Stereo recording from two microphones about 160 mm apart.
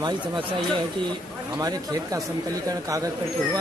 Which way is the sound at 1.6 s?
20° right (ahead or behind).